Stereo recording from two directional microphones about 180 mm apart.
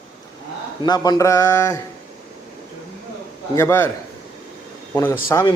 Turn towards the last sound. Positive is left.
turn(degrees=15)  # may be behind; listen again after turning